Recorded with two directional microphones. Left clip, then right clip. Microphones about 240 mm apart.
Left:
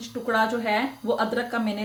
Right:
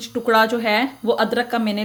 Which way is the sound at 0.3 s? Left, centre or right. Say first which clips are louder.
Right 7 dB; right.